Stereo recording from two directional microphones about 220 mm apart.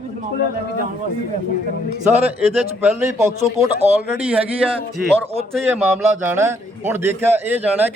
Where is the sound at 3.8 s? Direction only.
30° right (ahead or behind).